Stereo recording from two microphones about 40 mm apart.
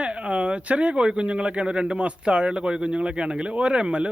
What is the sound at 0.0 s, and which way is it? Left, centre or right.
Speech, right.